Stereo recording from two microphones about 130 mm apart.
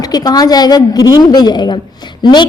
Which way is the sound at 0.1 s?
30° left (ahead or behind).